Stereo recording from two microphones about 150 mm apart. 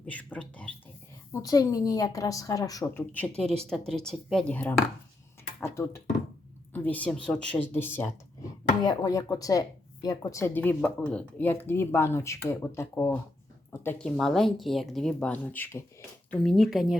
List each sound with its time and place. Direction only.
0.0 s a sound: 10° left (ahead or behind)
1.3 s speech: 25° left (ahead or behind)
8.8 s speech: 25° left (ahead or behind)
14.0 s speech: centre (ahead or behind)